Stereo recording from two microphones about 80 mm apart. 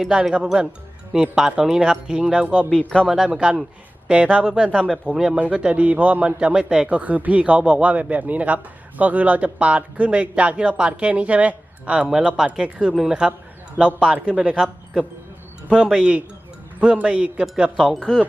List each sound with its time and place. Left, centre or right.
0.1 s a man's voice: centre
2.6 s speech: centre
3.1 s a man's voice: centre